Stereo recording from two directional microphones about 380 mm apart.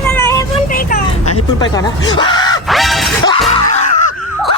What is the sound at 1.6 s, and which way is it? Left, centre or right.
Speech, centre.